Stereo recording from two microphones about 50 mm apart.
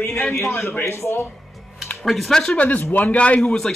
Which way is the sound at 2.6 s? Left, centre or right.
Left.